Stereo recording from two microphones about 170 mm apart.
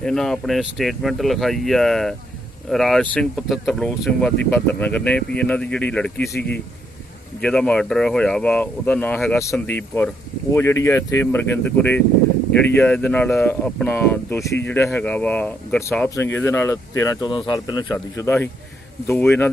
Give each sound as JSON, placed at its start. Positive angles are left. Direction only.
{"t": 0.0, "sound": "speech", "side_deg": 0}
{"t": 7.4, "sound": "speech", "side_deg": 5}